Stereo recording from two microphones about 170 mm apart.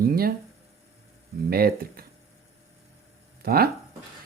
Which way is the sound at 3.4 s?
60° right (ahead or behind).